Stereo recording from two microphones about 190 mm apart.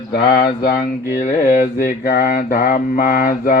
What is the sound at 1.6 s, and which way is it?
Mantra, 45° left (ahead or behind).